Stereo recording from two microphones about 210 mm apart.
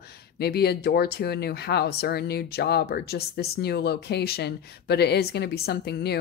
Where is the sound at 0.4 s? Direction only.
50° left (ahead or behind).